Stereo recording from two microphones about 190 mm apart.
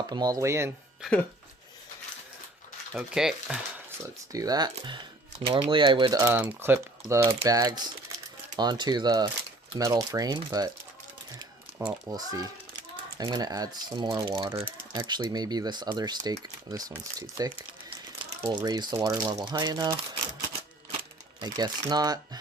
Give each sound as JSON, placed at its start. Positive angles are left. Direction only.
{"t": 0.1, "sound": "speech", "side_deg": -20}
{"t": 2.9, "sound": "speech", "side_deg": -5}
{"t": 4.3, "sound": "speech", "side_deg": -20}
{"t": 11.8, "sound": "speech", "side_deg": -10}
{"t": 21.4, "sound": "speech", "side_deg": -20}